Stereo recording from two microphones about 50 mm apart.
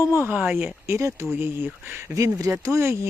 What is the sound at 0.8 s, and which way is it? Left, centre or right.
Speech, right.